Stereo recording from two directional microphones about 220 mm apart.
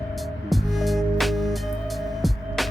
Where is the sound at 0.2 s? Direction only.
Centre (ahead or behind).